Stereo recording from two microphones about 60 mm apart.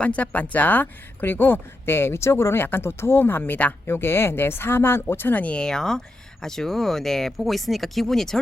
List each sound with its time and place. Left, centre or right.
0.0 s speech: left
3.8 s speech: left
5.5 s speech: centre